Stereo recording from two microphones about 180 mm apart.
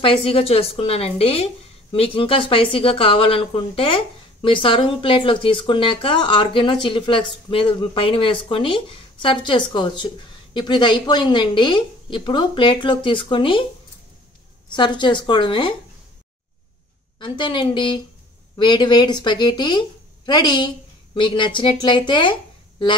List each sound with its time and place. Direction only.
0.0 s a woman's voice: 30° left (ahead or behind)
14.7 s a woman's voice: 25° left (ahead or behind)
17.2 s a woman's voice: 25° left (ahead or behind)